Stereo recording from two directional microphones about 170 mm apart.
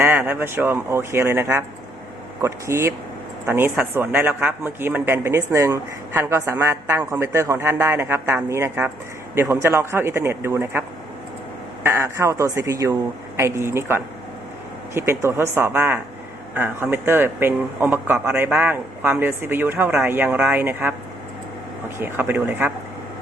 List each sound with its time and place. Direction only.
0.0 s a man's voice: 10° right (ahead or behind)